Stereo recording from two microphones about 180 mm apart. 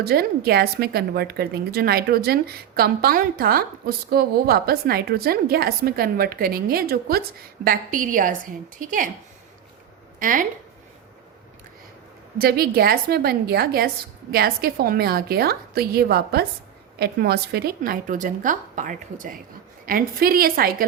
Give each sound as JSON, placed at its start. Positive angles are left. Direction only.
{"t": 0.0, "sound": "a woman's voice", "side_deg": -60}
{"t": 10.2, "sound": "a woman's voice", "side_deg": -50}
{"t": 12.4, "sound": "a woman's voice", "side_deg": -60}